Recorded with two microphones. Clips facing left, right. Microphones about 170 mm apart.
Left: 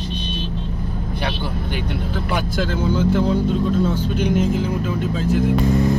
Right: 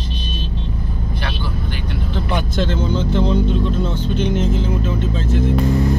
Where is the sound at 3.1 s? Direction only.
10° left (ahead or behind).